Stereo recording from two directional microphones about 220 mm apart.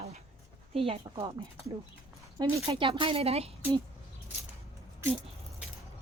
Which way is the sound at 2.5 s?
25° right (ahead or behind).